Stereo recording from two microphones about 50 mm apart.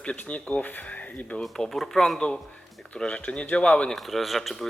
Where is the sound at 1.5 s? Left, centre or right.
Centre.